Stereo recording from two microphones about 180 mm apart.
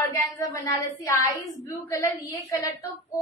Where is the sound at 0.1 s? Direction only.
20° left (ahead or behind).